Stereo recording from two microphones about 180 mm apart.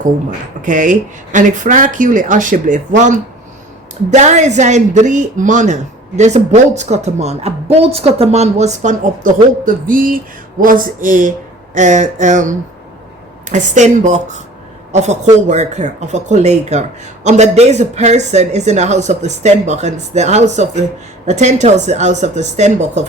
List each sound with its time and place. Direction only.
0.0 s speech: 45° right (ahead or behind)